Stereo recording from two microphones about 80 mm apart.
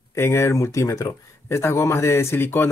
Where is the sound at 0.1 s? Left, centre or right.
Left.